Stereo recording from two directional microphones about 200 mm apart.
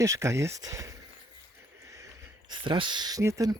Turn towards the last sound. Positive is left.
turn(degrees=-15)  # may be behind; listen again after turning